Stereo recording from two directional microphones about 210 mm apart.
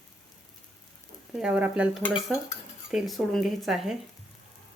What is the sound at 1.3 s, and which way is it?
Speech, 5° right (ahead or behind).